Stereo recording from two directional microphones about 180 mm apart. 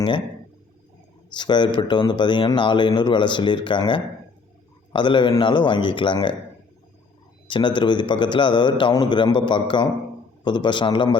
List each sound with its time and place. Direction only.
1.4 s speech: 25° left (ahead or behind)
7.4 s speech: 25° left (ahead or behind)